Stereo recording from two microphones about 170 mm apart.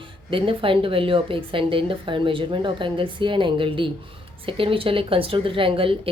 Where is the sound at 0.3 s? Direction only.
30° right (ahead or behind).